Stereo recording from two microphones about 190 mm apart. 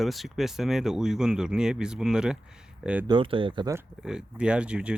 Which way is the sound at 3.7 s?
5° right (ahead or behind).